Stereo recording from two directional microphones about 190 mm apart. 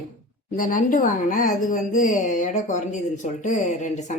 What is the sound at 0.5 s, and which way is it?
A woman's voice, 45° left (ahead or behind).